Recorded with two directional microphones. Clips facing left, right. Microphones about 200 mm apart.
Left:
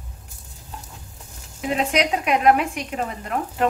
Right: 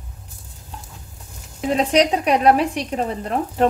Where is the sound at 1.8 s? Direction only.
35° right (ahead or behind).